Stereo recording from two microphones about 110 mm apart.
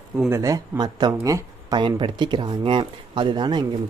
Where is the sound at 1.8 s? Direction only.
50° right (ahead or behind).